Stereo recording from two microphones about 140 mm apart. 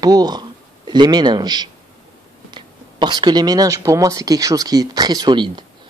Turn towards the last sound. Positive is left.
turn(degrees=-30)  # may be behind; listen again after turning